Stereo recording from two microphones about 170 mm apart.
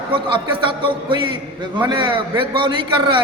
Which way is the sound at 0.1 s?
30° right (ahead or behind).